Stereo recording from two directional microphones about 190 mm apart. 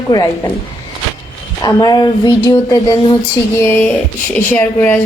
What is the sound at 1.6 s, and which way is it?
Speech, 20° left (ahead or behind).